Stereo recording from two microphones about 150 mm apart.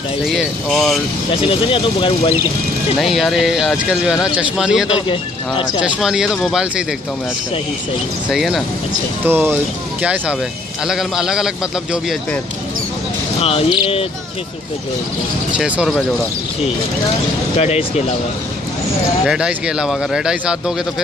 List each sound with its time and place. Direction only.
0.3 s speech: centre (ahead or behind)
1.3 s speech: 35° left (ahead or behind)
3.0 s speech: centre (ahead or behind)
8.3 s speech: centre (ahead or behind)
9.2 s speech: 15° right (ahead or behind)
13.4 s speech: 40° left (ahead or behind)
15.5 s speech: 5° right (ahead or behind)
17.6 s speech: 45° left (ahead or behind)
19.2 s speech: 5° right (ahead or behind)